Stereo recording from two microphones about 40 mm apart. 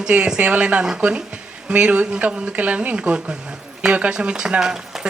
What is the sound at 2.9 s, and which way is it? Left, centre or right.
A woman's voice, right.